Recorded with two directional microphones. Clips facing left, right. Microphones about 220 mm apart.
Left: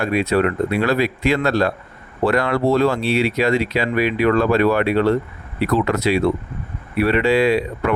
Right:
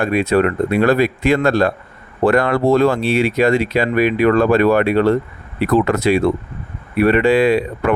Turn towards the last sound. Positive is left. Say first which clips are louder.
# right 3 dB
turn(degrees=-50)  # may be behind; listen again after turning